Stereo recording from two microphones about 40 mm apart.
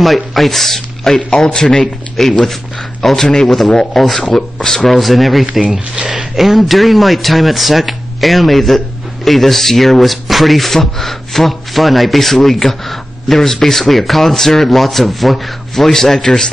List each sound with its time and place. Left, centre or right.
0.0 s speech: centre
2.2 s a man's voice: centre
4.2 s speech: left; by 5.5 s centre
5.5 s speech: right
6.3 s speech: centre